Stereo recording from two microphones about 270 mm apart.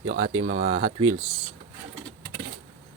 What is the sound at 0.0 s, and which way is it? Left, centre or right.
Speech, right.